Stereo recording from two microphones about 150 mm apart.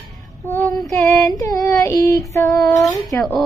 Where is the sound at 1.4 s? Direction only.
25° left (ahead or behind).